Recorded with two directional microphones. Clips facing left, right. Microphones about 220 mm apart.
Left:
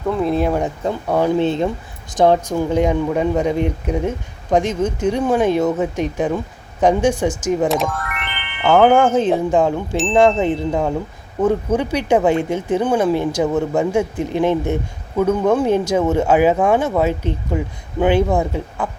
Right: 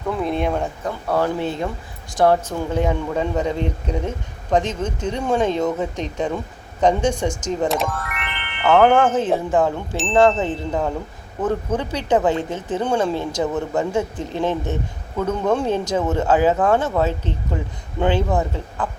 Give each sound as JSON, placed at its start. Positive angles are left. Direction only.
{"t": 0.1, "sound": "speech", "side_deg": 0}
{"t": 0.6, "sound": "speech", "side_deg": 15}